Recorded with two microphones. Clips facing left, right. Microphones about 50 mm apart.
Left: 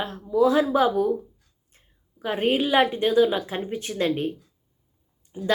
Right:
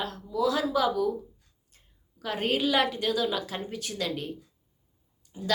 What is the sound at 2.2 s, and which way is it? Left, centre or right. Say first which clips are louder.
Speech: left 4 dB; centre.